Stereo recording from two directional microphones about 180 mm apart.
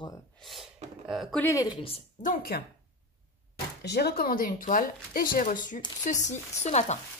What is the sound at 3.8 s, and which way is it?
Speech, 65° left (ahead or behind).